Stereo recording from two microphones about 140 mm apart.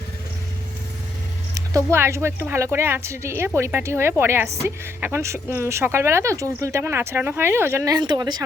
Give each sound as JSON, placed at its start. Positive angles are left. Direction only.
{"t": 1.5, "sound": "speech", "side_deg": -20}
{"t": 7.9, "sound": "speech", "side_deg": -30}